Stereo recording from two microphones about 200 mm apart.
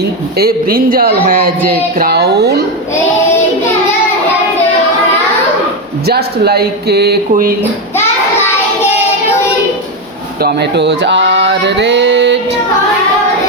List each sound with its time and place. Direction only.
0.3 s speech: 50° right (ahead or behind)
6.1 s speech: 50° right (ahead or behind)
10.4 s a sound: 60° right (ahead or behind)